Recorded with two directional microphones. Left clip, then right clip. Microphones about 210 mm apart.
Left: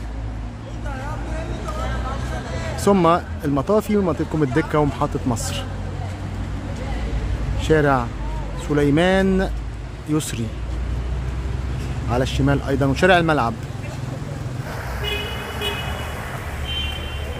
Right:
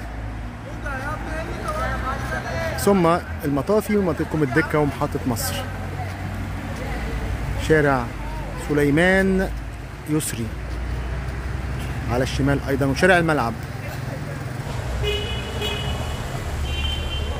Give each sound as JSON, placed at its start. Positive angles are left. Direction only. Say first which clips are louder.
{"t": 2.8, "sound": "speech", "louder": "left 2 dB", "side_deg": 5}
{"t": 7.6, "sound": "speech", "louder": "left 1 dB", "side_deg": 0}
{"t": 12.1, "sound": "speech", "louder": "left 1 dB", "side_deg": 5}